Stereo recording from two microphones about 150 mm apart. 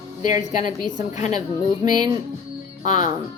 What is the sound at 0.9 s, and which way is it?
Speech, 50° left (ahead or behind).